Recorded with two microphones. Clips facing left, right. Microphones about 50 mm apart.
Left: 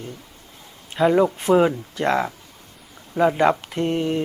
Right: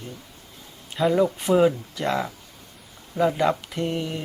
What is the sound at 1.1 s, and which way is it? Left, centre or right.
Speech, left.